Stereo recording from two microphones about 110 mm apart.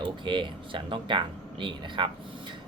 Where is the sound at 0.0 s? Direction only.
50° right (ahead or behind).